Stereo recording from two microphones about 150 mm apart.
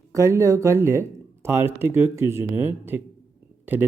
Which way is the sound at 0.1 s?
20° right (ahead or behind).